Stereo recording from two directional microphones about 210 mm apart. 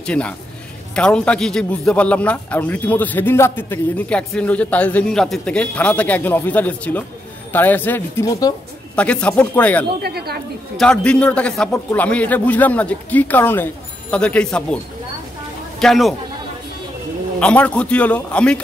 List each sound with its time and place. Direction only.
0.0 s a man's voice: 5° left (ahead or behind)
8.9 s a man's voice: 5° left (ahead or behind)
10.0 s speech: 50° right (ahead or behind)
10.8 s a man's voice: 5° left (ahead or behind)
15.8 s a man's voice: centre (ahead or behind)
17.4 s a man's voice: 5° left (ahead or behind)